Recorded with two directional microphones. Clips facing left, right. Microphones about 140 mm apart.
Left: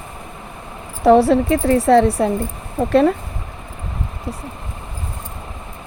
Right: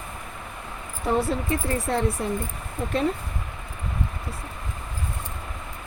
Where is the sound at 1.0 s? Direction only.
80° left.